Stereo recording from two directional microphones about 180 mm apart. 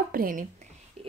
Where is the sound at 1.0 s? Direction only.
35° right (ahead or behind).